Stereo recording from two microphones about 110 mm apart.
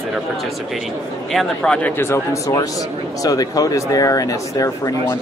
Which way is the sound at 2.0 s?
25° left (ahead or behind).